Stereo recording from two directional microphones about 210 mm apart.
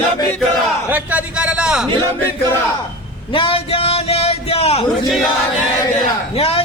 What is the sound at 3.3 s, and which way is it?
A man's voice, 25° left (ahead or behind).